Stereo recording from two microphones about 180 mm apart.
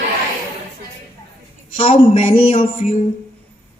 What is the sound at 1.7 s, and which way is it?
A man's voice, 30° left (ahead or behind).